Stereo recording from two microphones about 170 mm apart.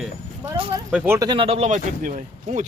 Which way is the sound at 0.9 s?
10° right (ahead or behind).